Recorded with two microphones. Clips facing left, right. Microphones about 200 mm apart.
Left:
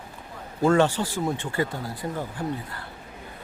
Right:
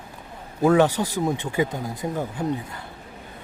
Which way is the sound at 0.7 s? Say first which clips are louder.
Right 2 dB; 15° right (ahead or behind).